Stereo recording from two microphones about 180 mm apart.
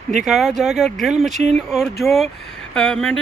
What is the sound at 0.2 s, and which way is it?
Speech, centre (ahead or behind).